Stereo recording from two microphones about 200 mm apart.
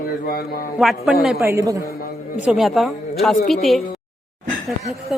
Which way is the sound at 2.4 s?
Centre (ahead or behind).